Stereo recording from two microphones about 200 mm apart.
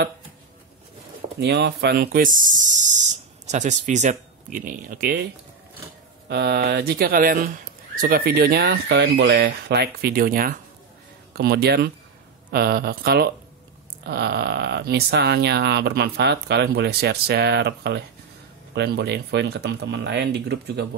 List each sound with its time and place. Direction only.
1.4 s speech: 55° right (ahead or behind)
6.2 s speech: 55° right (ahead or behind)